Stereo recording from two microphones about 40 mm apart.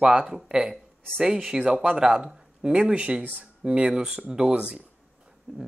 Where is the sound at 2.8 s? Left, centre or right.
Right.